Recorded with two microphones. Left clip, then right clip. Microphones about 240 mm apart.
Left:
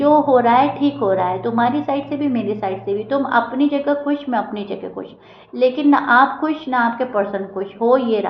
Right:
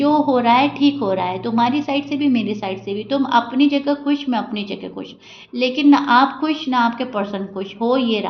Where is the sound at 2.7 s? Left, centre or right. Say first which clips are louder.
Left 2 dB; right.